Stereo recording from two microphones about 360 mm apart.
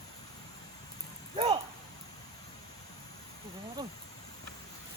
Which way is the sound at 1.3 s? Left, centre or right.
Centre.